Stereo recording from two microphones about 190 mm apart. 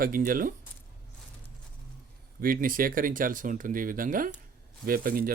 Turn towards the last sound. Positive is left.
turn(degrees=-50)  # may be behind; listen again after turning